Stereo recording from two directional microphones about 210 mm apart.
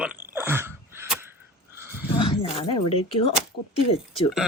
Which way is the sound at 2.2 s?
25° left (ahead or behind).